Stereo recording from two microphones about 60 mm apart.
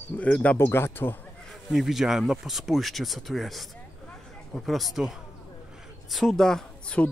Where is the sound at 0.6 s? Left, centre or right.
Left.